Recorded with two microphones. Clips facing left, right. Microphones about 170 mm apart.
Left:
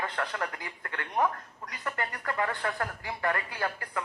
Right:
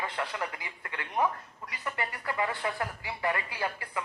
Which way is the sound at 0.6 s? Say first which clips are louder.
Left 2 dB; 45° left (ahead or behind).